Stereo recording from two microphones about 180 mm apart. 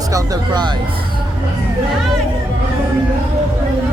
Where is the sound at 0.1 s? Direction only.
20° right (ahead or behind).